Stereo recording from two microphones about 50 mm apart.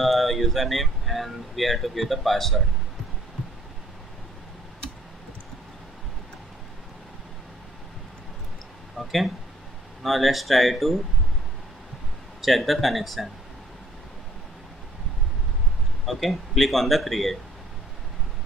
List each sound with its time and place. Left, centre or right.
0.0 s speech: centre
9.0 s a man's voice: centre
12.4 s a man's voice: centre
16.1 s a man's voice: centre